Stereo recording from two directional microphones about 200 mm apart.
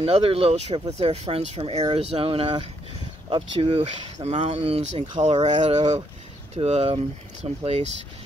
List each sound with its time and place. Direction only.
0.0 s speech: 30° right (ahead or behind)